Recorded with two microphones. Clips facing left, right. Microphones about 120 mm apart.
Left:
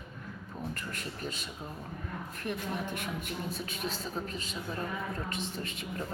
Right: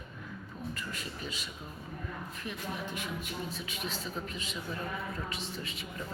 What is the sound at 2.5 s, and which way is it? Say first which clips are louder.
A man's voice: left 4 dB; 55° left (ahead or behind).